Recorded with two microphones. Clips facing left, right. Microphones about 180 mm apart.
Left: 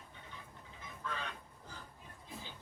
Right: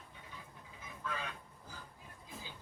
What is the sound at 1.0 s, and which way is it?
Duck, 10° right (ahead or behind).